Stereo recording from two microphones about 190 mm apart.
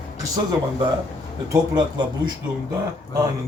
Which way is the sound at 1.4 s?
20° right (ahead or behind).